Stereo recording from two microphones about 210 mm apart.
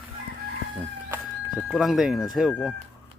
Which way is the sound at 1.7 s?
Centre (ahead or behind).